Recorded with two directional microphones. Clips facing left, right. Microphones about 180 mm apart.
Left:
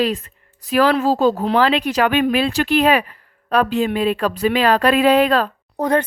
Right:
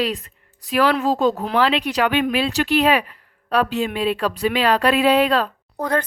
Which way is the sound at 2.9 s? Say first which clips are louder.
Left 2 dB; 50° left (ahead or behind).